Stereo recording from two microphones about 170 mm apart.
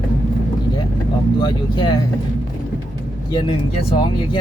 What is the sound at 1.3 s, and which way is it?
Vehicle, 25° left (ahead or behind).